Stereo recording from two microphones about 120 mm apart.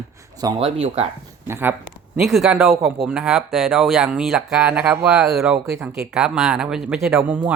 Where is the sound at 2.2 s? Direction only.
Centre (ahead or behind).